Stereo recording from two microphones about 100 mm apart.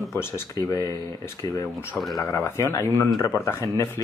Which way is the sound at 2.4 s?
25° left (ahead or behind).